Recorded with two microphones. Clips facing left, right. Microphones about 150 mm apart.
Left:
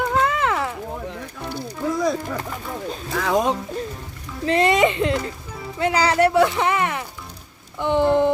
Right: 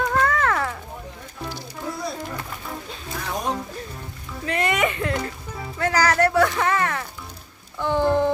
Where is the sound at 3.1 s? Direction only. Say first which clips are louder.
Left 9 dB; 90° left.